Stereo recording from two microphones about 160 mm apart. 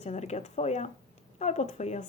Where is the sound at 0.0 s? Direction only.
45° left (ahead or behind).